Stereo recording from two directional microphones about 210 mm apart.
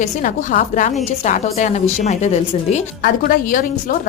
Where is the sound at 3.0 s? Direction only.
45° left (ahead or behind).